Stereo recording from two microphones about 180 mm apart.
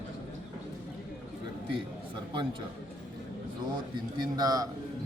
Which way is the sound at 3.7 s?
25° right (ahead or behind).